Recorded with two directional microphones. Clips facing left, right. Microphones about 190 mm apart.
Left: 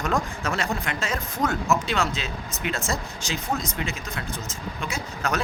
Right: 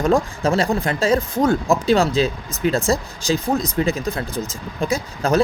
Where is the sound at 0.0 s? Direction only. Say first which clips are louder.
Right 9 dB; 30° right (ahead or behind).